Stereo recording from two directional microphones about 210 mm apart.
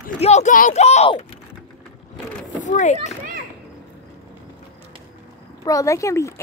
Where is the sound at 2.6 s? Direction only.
35° left (ahead or behind).